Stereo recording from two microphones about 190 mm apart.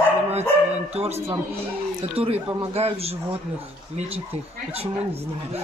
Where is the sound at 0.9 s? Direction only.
30° right (ahead or behind).